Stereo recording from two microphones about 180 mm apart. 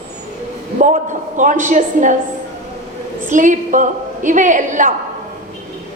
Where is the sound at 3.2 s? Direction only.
45° right (ahead or behind).